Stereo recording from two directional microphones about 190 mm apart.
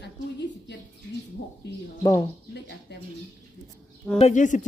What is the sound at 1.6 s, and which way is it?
Speech, 60° left (ahead or behind).